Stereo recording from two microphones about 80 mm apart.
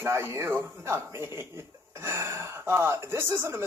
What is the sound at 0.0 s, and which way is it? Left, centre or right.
Speech, right.